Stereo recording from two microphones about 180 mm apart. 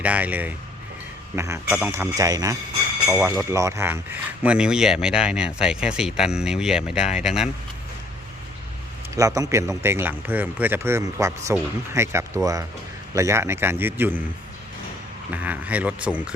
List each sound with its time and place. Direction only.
0.0 s a man's voice: 10° right (ahead or behind)
3.1 s a man's voice: 5° right (ahead or behind)
9.1 s a man's voice: 20° right (ahead or behind)
15.3 s a man's voice: 10° right (ahead or behind)